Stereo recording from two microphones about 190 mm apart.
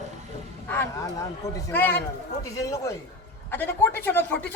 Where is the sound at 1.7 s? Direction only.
10° left (ahead or behind).